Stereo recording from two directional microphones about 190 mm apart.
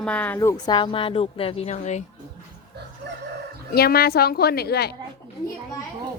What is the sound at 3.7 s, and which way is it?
A woman's voice, 55° left (ahead or behind).